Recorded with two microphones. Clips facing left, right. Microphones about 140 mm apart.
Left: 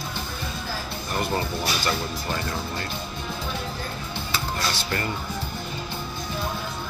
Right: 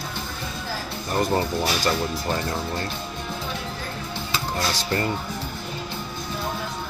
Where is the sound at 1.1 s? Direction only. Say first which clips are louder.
Right 4 dB; 30° right (ahead or behind).